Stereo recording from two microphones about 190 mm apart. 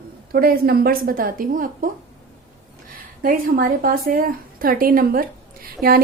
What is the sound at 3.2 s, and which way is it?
Speech, 50° right (ahead or behind).